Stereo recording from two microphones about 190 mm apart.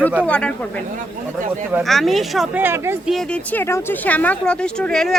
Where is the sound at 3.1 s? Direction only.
5° left (ahead or behind).